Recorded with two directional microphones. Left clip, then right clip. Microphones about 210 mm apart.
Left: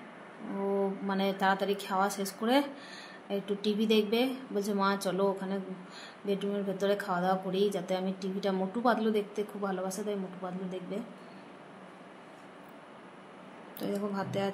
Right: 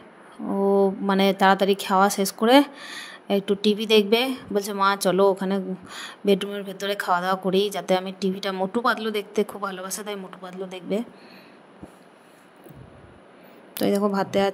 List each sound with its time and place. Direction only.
0.7 s speech: 45° right (ahead or behind)
13.7 s speech: 45° right (ahead or behind)